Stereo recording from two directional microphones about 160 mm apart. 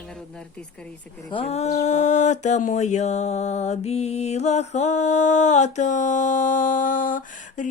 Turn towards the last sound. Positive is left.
turn(degrees=55)  # may be behind; listen again after turning